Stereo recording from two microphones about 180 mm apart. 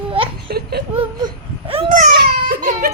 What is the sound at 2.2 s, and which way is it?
Baby cry, 60° right (ahead or behind).